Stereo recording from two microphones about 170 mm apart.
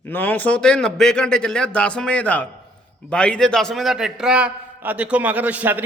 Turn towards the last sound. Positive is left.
turn(degrees=-10)  # may be behind; listen again after turning